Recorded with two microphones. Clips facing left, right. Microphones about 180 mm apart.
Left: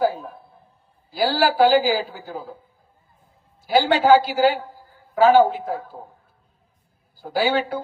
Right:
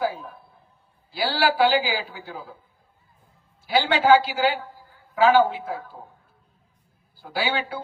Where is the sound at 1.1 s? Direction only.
40° left (ahead or behind).